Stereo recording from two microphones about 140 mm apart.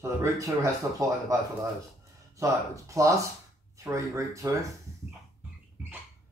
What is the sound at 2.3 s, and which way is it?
Speech, 20° right (ahead or behind).